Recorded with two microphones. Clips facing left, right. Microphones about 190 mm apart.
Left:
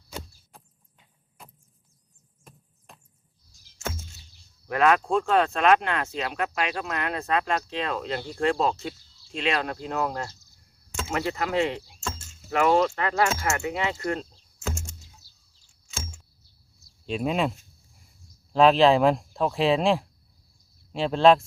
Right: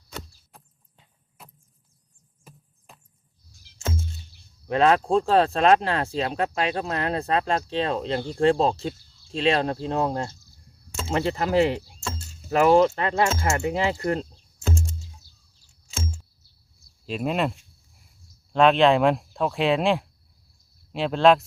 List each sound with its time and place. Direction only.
0.5 s a sound: centre (ahead or behind)
1.4 s vehicle: 5° right (ahead or behind)
2.4 s a sound: 5° right (ahead or behind)
3.8 s music: 30° right (ahead or behind)
4.7 s speech: 30° right (ahead or behind)
15.6 s music: 35° right (ahead or behind)
17.1 s speech: centre (ahead or behind)